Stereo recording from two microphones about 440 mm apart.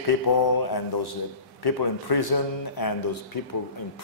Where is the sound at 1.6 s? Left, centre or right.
Left.